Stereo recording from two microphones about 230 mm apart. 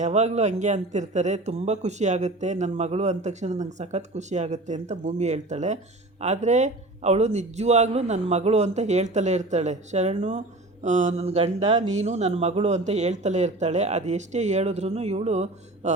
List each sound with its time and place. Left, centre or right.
0.0 s a man's voice: right